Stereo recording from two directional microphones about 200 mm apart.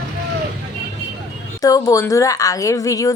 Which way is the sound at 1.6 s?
15° left (ahead or behind).